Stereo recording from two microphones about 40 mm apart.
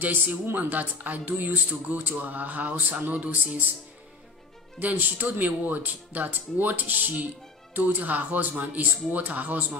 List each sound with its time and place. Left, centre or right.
0.0 s a man's voice: right
0.6 s speech: right
4.7 s a man's voice: right